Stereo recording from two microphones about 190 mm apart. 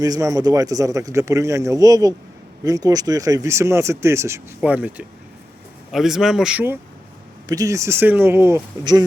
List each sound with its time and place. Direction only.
0.0 s speech: 20° right (ahead or behind)
7.4 s speech: 20° right (ahead or behind)